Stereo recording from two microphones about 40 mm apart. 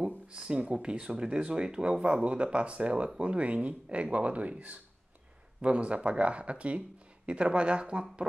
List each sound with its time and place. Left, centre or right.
0.3 s speech: centre